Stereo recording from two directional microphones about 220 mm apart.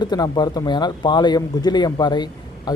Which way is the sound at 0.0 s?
20° left (ahead or behind).